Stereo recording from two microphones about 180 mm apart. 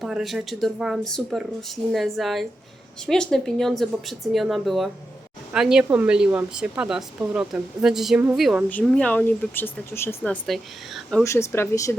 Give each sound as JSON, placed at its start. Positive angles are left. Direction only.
{"t": 0.0, "sound": "a woman's voice", "side_deg": 0}
{"t": 10.4, "sound": "a woman's voice", "side_deg": 0}
{"t": 11.2, "sound": "speech", "side_deg": 15}